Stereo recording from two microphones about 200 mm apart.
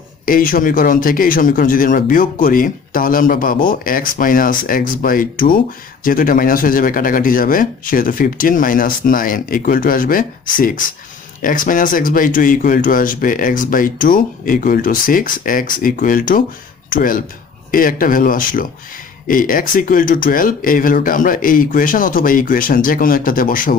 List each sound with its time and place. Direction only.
0.2 s speech: 45° left (ahead or behind)